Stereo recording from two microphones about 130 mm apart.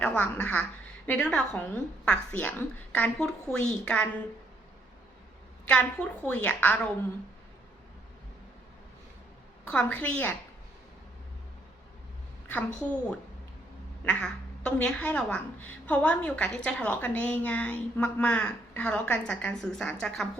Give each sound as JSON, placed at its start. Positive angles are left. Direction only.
{"t": 0.0, "sound": "a woman's voice", "side_deg": 10}
{"t": 5.6, "sound": "a woman's voice", "side_deg": 10}
{"t": 9.6, "sound": "a woman's voice", "side_deg": 10}
{"t": 12.5, "sound": "a woman's voice", "side_deg": 10}